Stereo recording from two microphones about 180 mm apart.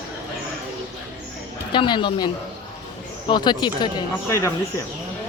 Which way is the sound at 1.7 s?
25° left (ahead or behind).